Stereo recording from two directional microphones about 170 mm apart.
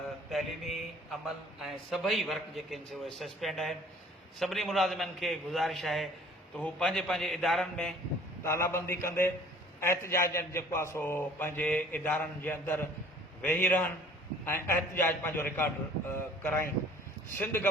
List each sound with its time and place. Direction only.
0.3 s mantra: centre (ahead or behind)
1.6 s a man's voice: centre (ahead or behind)
8.4 s a man's voice: 15° left (ahead or behind)